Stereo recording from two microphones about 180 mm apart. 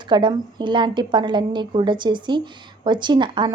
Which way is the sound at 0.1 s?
25° right (ahead or behind).